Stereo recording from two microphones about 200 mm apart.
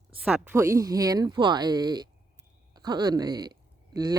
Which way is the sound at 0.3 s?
5° right (ahead or behind).